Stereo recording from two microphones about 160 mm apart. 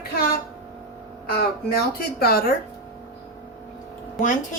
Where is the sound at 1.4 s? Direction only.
75° left (ahead or behind).